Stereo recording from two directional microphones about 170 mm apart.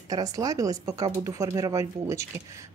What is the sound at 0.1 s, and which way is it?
Speech, 20° right (ahead or behind).